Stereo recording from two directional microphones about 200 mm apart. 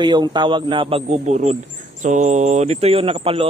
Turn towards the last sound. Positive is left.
turn(degrees=-30)  # may be behind; listen again after turning